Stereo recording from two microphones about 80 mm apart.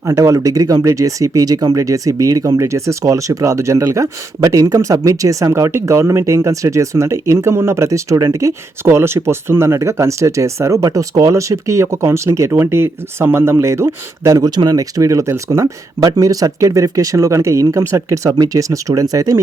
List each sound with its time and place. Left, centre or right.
0.0 s speech: right
14.3 s speech: right